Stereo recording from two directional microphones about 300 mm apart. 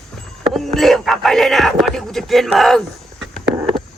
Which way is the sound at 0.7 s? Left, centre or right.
Centre.